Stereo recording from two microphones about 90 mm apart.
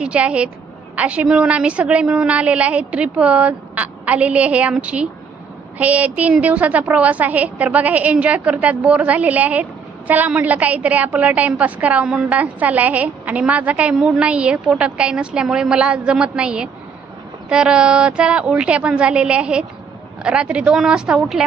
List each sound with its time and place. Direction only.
0.0 s a woman's voice: 10° right (ahead or behind)